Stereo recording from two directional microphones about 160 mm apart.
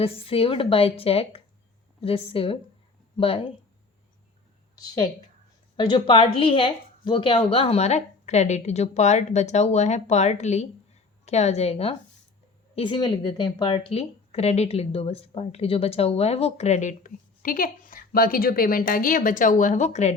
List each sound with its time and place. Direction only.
0.0 s a woman's voice: 35° left (ahead or behind)
5.7 s a woman's voice: 30° left (ahead or behind); by 20.1 s 45° left (ahead or behind)